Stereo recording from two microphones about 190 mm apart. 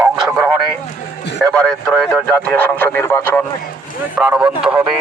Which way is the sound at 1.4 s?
5° left (ahead or behind).